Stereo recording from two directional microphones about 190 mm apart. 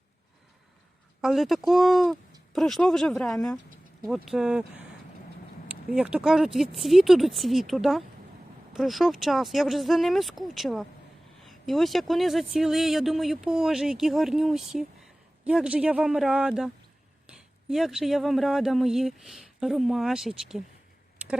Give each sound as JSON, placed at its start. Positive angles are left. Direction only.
{"t": 1.2, "sound": "speech", "side_deg": 0}
{"t": 5.9, "sound": "speech", "side_deg": -5}